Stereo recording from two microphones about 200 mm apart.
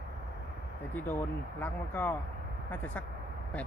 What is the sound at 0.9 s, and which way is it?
Speech, 10° left (ahead or behind).